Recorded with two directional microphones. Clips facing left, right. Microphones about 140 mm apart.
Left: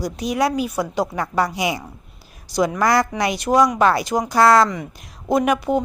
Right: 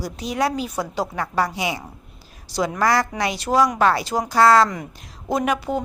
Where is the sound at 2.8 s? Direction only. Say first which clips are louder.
Even; 15° left (ahead or behind).